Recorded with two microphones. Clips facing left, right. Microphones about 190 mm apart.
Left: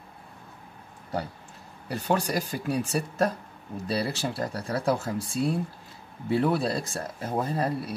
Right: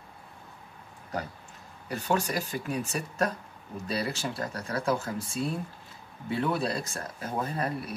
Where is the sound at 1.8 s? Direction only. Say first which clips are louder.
Left 2 dB; 35° left (ahead or behind).